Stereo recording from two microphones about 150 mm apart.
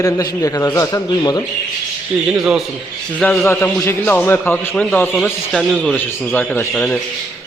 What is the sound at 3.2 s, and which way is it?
Speech, 10° left (ahead or behind).